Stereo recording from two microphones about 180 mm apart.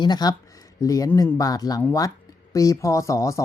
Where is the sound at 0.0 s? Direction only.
25° left (ahead or behind).